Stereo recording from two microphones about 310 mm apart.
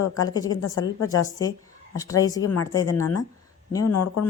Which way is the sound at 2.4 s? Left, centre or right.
Left.